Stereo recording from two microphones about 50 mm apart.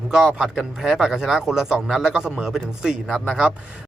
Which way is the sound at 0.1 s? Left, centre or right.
Centre.